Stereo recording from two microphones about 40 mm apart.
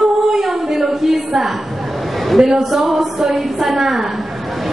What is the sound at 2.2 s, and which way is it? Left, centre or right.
A woman's voice, centre.